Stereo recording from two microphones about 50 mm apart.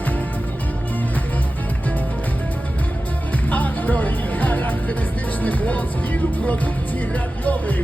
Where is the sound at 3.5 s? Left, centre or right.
Left.